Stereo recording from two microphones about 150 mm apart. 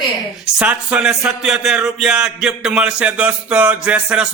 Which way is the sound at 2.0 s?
5° right (ahead or behind).